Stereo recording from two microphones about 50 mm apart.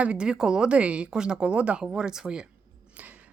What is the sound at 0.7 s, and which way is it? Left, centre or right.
A woman's voice, right.